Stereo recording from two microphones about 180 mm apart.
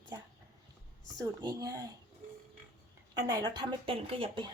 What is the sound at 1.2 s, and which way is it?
Speech, 20° right (ahead or behind).